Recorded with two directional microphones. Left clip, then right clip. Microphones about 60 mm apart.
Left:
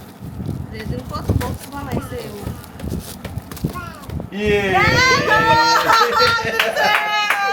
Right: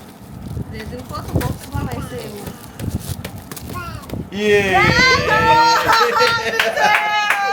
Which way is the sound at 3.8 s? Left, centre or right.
Right.